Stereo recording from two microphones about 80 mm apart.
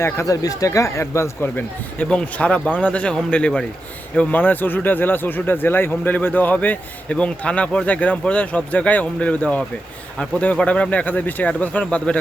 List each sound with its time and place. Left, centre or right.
0.0 s speech: left
2.0 s speech: centre